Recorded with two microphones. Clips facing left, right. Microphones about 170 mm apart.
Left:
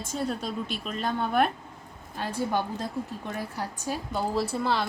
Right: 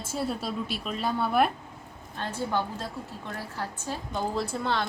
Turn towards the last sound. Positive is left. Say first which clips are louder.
# left 2 dB
turn(degrees=0)  # may be behind; listen again after turning